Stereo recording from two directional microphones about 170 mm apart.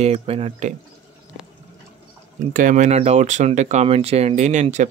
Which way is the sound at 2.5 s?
50° right (ahead or behind).